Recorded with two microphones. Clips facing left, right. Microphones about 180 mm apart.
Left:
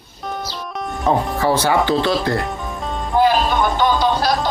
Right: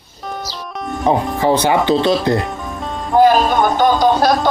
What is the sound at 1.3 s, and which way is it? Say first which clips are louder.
Speech: right 2 dB; 20° right (ahead or behind).